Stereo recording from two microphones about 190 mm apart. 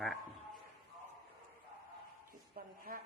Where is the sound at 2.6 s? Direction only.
50° right (ahead or behind).